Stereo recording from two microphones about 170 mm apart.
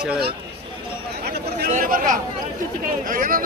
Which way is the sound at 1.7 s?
50° right (ahead or behind).